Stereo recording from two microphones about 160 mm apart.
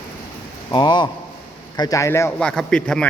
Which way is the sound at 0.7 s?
30° left (ahead or behind).